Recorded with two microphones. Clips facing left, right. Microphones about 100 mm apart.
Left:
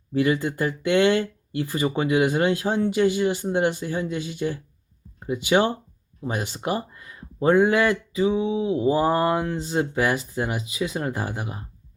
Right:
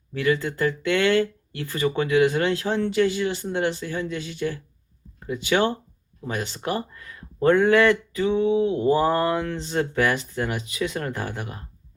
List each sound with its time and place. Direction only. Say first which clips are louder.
0.1 s speech: left 1 dB; 15° left (ahead or behind)